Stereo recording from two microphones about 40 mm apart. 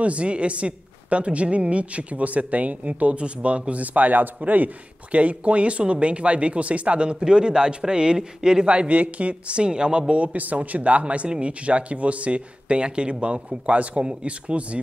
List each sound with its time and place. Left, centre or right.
0.0 s a woman's voice: right
5.1 s speech: right